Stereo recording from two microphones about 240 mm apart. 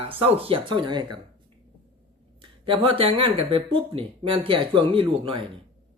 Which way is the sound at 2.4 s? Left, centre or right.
Right.